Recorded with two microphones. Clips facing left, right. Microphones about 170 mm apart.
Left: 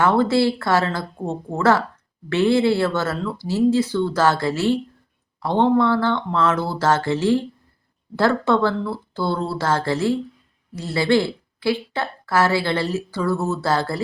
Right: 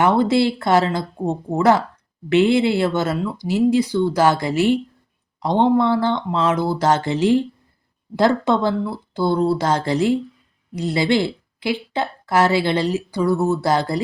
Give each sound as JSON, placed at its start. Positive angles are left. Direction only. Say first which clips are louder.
{"t": 0.0, "sound": "a woman's voice", "louder": "right 1 dB", "side_deg": -15}